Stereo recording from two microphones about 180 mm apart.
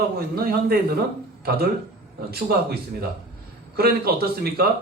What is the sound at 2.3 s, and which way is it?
A man's voice, 60° right (ahead or behind).